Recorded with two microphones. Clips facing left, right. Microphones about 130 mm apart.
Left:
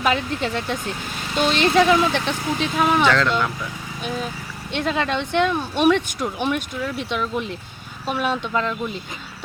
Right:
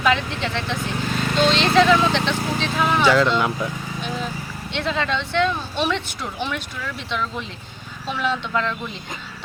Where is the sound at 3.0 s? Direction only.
10° right (ahead or behind).